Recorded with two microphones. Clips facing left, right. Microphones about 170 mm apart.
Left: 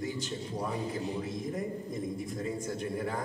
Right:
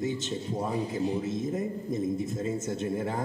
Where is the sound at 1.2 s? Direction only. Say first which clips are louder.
Right 5 dB; 25° right (ahead or behind).